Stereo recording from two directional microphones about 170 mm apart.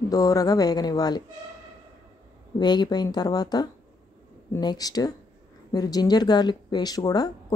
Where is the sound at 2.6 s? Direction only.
25° left (ahead or behind).